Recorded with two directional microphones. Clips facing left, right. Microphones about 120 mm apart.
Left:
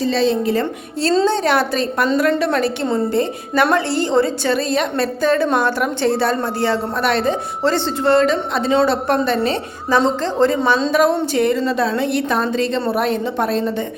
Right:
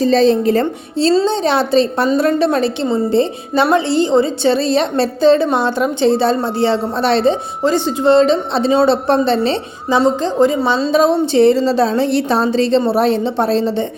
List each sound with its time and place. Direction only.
0.0 s a woman's voice: 40° right (ahead or behind)
1.0 s a woman's voice: 25° right (ahead or behind)
7.6 s a woman's voice: 15° right (ahead or behind)
10.4 s a woman's voice: 15° right (ahead or behind)
10.9 s a woman's voice: 25° right (ahead or behind)